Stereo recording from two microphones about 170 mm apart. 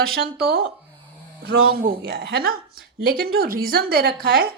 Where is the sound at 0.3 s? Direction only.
70° right (ahead or behind).